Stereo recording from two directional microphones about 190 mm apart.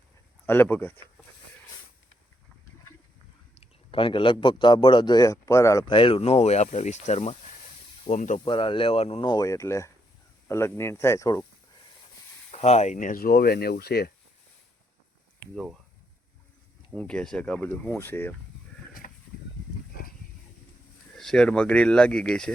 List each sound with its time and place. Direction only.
0.4 s speech: 10° left (ahead or behind)
3.6 s a man's voice: 25° left (ahead or behind)
5.9 s speech: 30° left (ahead or behind)
8.4 s speech: 25° left (ahead or behind)
12.5 s speech: 35° left (ahead or behind); by 14.1 s 55° left (ahead or behind)
15.5 s speech: centre (ahead or behind)
16.9 s speech: 5° left (ahead or behind)
19.0 s a sound: 45° left (ahead or behind)
21.2 s speech: 5° left (ahead or behind)